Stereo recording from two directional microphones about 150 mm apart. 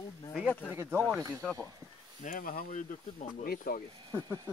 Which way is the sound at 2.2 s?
65° left (ahead or behind).